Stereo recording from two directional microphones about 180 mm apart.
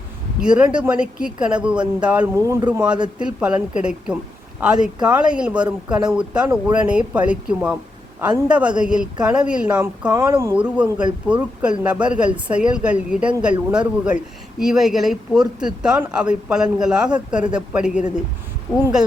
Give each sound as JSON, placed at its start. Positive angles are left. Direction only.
{"t": 0.4, "sound": "speech", "side_deg": -5}
{"t": 2.3, "sound": "speech", "side_deg": -20}
{"t": 2.6, "sound": "speech", "side_deg": -5}